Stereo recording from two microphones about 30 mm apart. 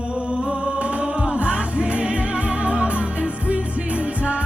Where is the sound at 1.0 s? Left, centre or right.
Right.